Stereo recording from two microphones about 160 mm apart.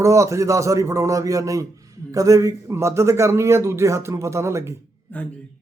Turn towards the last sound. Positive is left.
turn(degrees=-15)  # may be behind; listen again after turning